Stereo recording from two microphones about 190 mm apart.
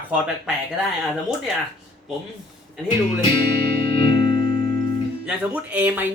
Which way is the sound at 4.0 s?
25° left (ahead or behind).